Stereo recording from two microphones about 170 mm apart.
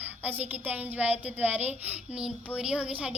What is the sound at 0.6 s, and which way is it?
Speech, 10° right (ahead or behind).